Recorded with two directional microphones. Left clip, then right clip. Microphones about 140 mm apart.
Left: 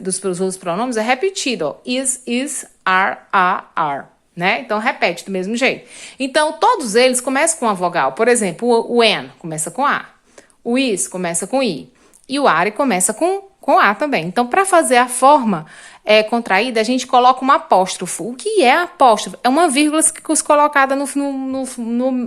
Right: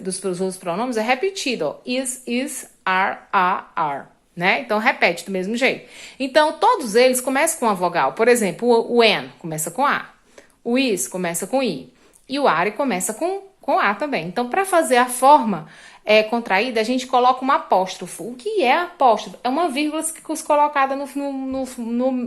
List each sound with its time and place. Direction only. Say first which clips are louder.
0.0 s a woman's voice: left 4 dB; 30° left (ahead or behind)
17.8 s speech: left 6 dB; 50° left (ahead or behind)
21.2 s speech: left 3 dB; 30° left (ahead or behind)